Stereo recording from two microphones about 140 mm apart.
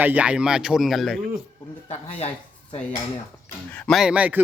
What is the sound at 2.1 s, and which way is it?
Speech, 50° left (ahead or behind).